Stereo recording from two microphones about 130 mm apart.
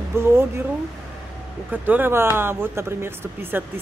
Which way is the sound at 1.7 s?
15° right (ahead or behind).